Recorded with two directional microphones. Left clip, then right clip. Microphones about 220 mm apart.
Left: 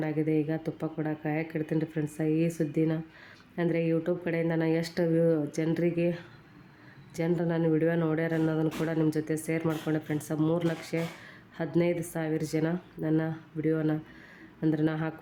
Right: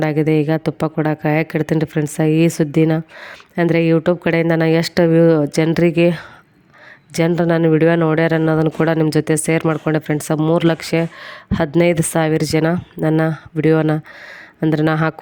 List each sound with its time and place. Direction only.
0.0 s speech: 45° right (ahead or behind)